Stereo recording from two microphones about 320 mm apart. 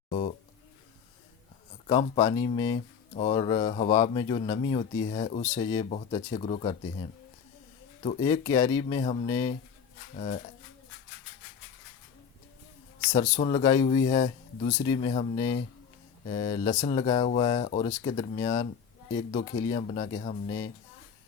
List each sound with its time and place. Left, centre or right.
1.9 s speech: centre
13.0 s speech: left